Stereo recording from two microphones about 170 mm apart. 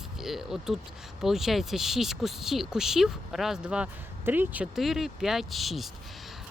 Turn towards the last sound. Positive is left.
turn(degrees=0)  # may be behind; listen again after turning